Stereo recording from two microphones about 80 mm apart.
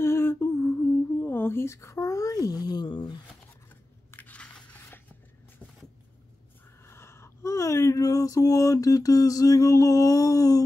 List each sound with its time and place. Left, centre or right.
0.0 s humming: left
4.1 s crunch: centre
6.9 s a sound: left